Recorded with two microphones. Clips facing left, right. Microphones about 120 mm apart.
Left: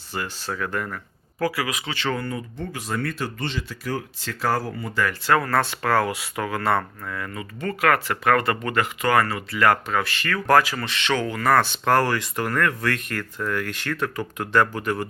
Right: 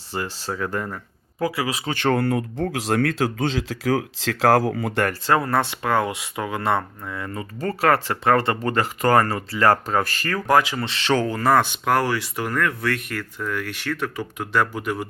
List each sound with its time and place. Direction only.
0.1 s speech: 30° right (ahead or behind)
1.9 s speech: 50° right (ahead or behind)
2.1 s speech: 85° right
5.2 s speech: 25° right (ahead or behind)
7.3 s speech: 35° right (ahead or behind)
10.4 s speech: 15° right (ahead or behind); by 11.4 s 35° right (ahead or behind)
11.4 s speech: 15° right (ahead or behind)